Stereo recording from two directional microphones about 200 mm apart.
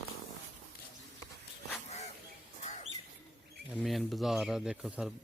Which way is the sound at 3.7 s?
Centre (ahead or behind).